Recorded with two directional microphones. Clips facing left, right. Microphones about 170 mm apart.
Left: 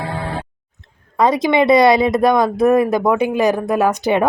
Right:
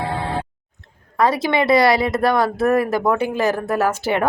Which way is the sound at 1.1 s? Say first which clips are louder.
Left 3 dB; 20° left (ahead or behind).